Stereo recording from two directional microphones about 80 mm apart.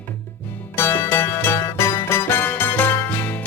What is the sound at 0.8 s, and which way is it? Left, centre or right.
Music, left.